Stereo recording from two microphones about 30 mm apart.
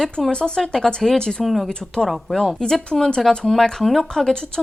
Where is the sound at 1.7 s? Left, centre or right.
Left.